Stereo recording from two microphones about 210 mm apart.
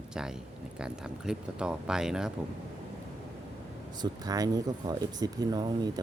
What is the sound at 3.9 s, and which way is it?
Speech, 20° right (ahead or behind).